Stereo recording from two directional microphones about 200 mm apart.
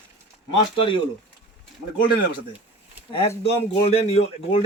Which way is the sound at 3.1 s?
30° left (ahead or behind).